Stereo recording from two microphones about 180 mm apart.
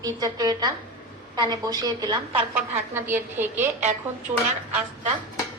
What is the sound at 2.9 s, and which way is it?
Speech, 10° right (ahead or behind).